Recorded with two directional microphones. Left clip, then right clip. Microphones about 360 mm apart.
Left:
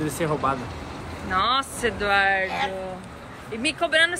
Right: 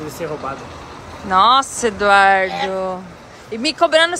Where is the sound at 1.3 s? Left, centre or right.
Centre.